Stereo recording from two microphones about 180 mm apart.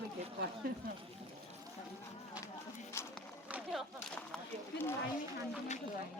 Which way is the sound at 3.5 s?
10° right (ahead or behind).